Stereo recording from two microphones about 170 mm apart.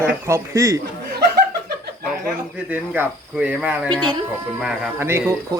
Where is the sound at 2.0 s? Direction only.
5° right (ahead or behind).